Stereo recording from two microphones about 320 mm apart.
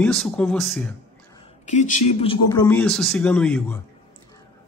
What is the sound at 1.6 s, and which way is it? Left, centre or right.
A man's voice, left.